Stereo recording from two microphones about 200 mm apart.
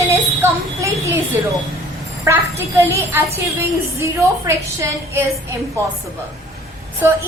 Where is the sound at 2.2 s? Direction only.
15° right (ahead or behind).